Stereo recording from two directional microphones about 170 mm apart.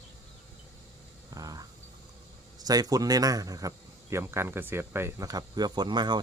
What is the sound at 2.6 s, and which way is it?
Speech, 20° right (ahead or behind).